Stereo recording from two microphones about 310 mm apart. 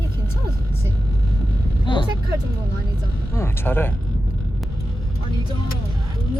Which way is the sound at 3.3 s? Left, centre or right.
Centre.